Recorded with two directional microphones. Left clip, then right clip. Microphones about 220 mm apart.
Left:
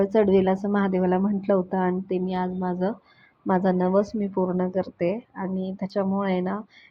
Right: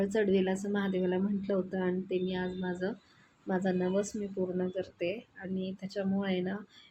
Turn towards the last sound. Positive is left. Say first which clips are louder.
# left 8 dB
turn(degrees=25)  # may be behind; listen again after turning